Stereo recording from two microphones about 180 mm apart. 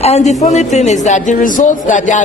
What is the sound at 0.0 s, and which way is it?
A man's voice, 40° left (ahead or behind).